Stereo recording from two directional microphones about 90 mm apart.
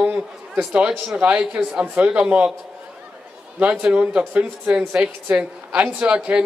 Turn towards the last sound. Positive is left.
turn(degrees=-10)  # may be behind; listen again after turning